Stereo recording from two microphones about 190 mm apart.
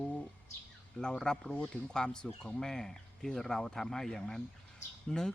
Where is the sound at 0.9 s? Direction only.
5° left (ahead or behind).